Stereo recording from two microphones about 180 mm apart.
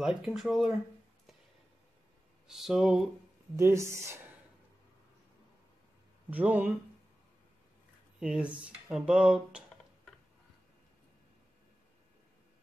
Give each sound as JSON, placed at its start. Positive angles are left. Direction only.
{"t": 0.0, "sound": "speech", "side_deg": -5}
{"t": 2.4, "sound": "speech", "side_deg": 0}
{"t": 3.5, "sound": "speech", "side_deg": -15}
{"t": 6.3, "sound": "speech", "side_deg": -10}
{"t": 8.2, "sound": "speech", "side_deg": -5}